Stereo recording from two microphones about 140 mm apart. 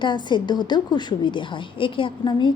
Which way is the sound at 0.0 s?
35° left (ahead or behind).